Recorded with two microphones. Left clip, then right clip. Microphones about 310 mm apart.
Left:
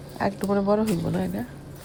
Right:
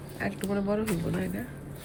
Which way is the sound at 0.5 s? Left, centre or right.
Left.